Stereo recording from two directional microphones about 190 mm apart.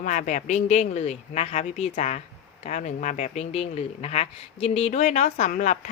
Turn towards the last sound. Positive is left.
turn(degrees=40)  # may be behind; listen again after turning